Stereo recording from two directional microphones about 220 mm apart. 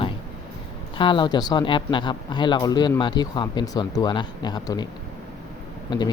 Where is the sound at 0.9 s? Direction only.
20° left (ahead or behind).